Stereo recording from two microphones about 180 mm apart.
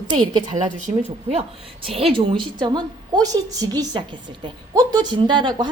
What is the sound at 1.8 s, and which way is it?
A woman's voice, 30° right (ahead or behind).